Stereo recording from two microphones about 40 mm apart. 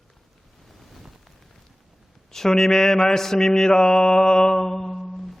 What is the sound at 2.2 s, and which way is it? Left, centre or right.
Mantra, centre.